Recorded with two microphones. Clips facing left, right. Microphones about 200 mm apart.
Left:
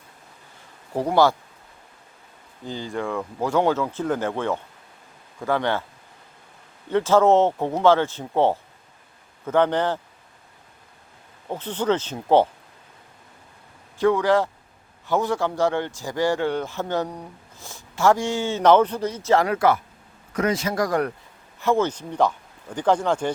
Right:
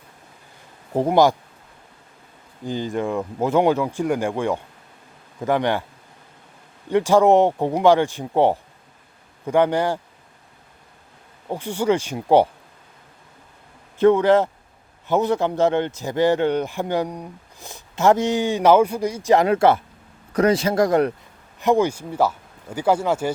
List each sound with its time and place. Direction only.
0.9 s speech: 20° right (ahead or behind)
2.6 s speech: 15° right (ahead or behind)
6.9 s speech: 15° right (ahead or behind)
11.4 s speech: 10° right (ahead or behind)
14.0 s a man's voice: 20° right (ahead or behind)